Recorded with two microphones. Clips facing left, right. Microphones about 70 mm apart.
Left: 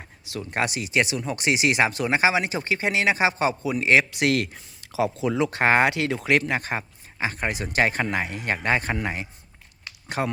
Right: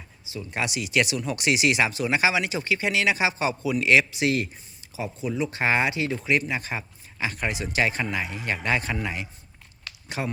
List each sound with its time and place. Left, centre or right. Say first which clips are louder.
0.0 s a sound: left 3 dB; left
0.5 s speech: left 1 dB; left
4.1 s speech: left 2 dB; left
5.5 s speech: left 4 dB; left
6.6 s speech: left 3 dB; left